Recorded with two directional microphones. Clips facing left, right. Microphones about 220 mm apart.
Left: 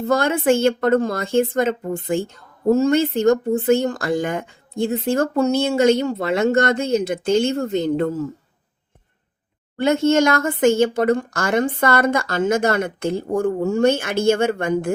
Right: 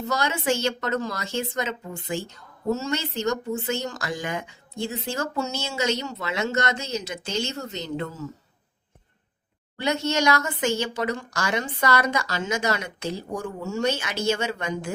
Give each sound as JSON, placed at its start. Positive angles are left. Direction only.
{"t": 0.0, "sound": "a woman's voice", "side_deg": 55}
{"t": 9.7, "sound": "a woman's voice", "side_deg": 50}